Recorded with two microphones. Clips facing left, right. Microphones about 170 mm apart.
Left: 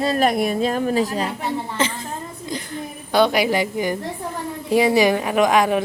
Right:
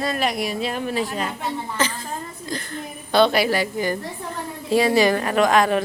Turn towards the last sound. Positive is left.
turn(degrees=15)  # may be behind; listen again after turning